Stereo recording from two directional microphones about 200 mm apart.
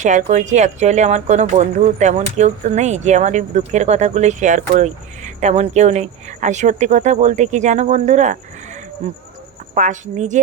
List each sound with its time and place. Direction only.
0.0 s speech: 35° right (ahead or behind)